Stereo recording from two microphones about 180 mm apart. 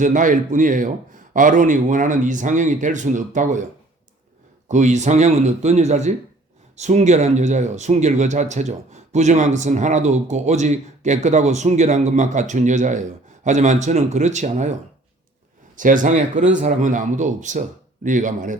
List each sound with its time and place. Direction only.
0.0 s a man's voice: 45° right (ahead or behind)
4.7 s a man's voice: 40° right (ahead or behind)